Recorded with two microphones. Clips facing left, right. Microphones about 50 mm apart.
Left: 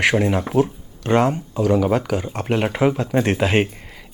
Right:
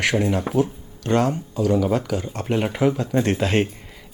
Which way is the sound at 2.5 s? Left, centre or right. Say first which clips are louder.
Left 2 dB; left.